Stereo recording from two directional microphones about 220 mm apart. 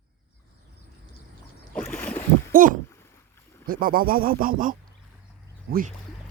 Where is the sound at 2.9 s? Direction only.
10° left (ahead or behind).